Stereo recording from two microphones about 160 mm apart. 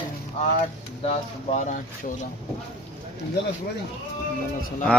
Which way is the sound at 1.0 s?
40° left (ahead or behind).